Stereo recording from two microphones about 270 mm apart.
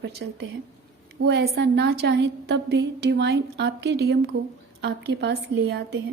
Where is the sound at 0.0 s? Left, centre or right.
Right.